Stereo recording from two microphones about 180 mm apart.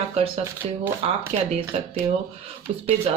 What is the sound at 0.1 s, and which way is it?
Speech, 35° right (ahead or behind).